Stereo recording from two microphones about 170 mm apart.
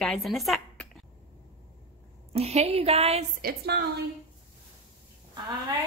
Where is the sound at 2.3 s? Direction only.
35° right (ahead or behind).